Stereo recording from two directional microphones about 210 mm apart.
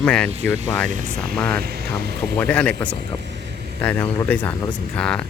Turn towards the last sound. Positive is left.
turn(degrees=5)  # may be behind; listen again after turning